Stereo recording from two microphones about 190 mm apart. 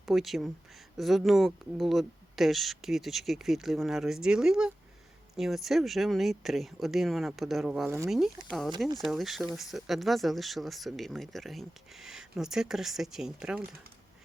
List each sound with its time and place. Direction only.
0.0 s speech: centre (ahead or behind)
8.1 s speech: centre (ahead or behind)